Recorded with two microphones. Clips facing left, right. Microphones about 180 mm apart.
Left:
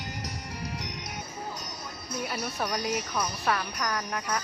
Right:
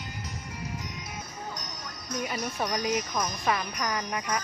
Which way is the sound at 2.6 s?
10° left (ahead or behind).